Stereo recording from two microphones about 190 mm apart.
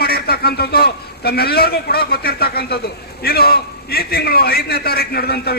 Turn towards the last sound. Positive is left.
turn(degrees=55)  # may be behind; listen again after turning